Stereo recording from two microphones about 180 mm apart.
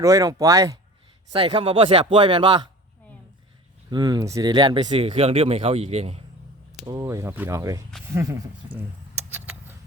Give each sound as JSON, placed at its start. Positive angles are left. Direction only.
{"t": 0.0, "sound": "speech", "side_deg": -20}
{"t": 1.3, "sound": "speech", "side_deg": -30}
{"t": 3.8, "sound": "speech", "side_deg": -20}
{"t": 6.8, "sound": "speech", "side_deg": -20}
{"t": 8.1, "sound": "a sound", "side_deg": -15}